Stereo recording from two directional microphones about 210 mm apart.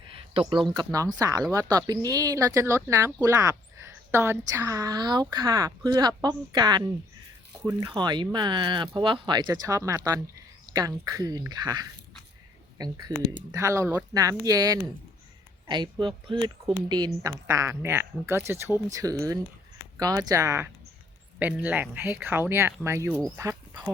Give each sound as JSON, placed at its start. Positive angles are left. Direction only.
{"t": 0.1, "sound": "speech", "side_deg": -25}